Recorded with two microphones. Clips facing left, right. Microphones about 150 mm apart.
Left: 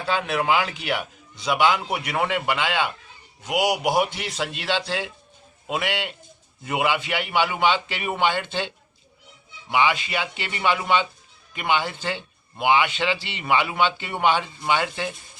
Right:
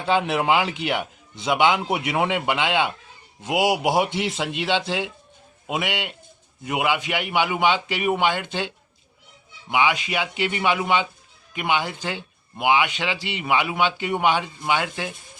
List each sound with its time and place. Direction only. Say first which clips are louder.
0.0 s a man's voice: right 3 dB; 20° right (ahead or behind)